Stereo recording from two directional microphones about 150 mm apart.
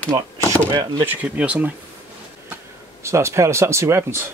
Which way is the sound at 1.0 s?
10° right (ahead or behind).